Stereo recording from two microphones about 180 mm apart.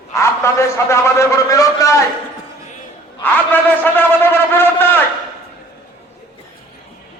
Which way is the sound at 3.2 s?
10° left (ahead or behind).